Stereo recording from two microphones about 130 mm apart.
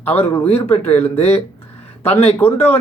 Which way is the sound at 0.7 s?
55° left (ahead or behind).